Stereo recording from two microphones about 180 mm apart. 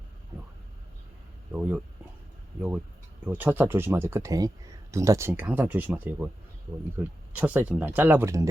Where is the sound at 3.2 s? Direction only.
10° right (ahead or behind).